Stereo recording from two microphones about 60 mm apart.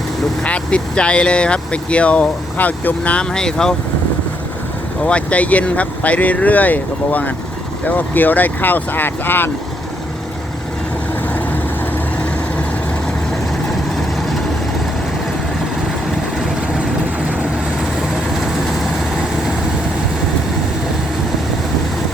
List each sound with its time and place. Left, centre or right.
0.4 s speech: centre
3.3 s speech: centre
5.0 s speech: left